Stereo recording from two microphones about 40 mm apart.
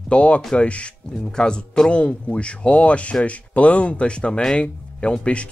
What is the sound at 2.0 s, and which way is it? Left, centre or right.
Speech, left.